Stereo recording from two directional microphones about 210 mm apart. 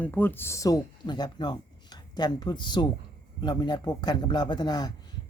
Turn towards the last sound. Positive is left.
turn(degrees=20)  # may be behind; listen again after turning